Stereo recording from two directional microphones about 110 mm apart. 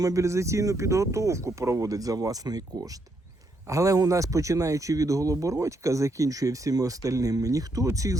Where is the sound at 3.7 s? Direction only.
30° right (ahead or behind).